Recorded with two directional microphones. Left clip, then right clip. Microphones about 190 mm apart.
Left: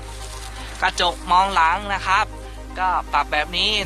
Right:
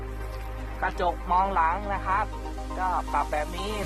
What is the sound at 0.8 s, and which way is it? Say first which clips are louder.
Speech: left 7 dB; 10° left (ahead or behind).